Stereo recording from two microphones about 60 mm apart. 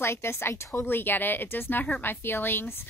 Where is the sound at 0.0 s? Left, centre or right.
Left.